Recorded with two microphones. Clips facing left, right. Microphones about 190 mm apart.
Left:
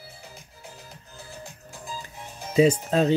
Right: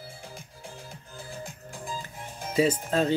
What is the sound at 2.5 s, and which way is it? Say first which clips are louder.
Speech: left 5 dB; 20° left (ahead or behind).